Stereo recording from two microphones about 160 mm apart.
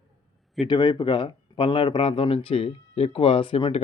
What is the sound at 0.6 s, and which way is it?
Speech, 25° left (ahead or behind).